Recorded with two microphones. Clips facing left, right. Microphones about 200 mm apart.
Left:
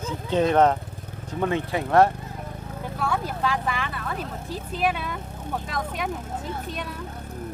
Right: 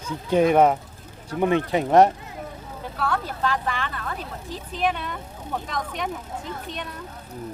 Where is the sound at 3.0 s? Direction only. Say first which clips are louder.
Right 1 dB; 10° left (ahead or behind).